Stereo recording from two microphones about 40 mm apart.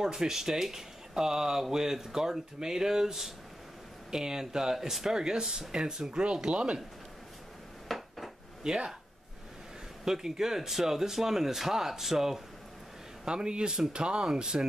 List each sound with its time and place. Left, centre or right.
0.0 s speech: centre
6.2 s speech: right
7.9 s dishes: centre
8.6 s speech: centre
10.0 s speech: centre
13.2 s speech: right